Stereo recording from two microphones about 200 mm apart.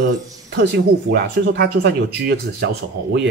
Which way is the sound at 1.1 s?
55° right (ahead or behind).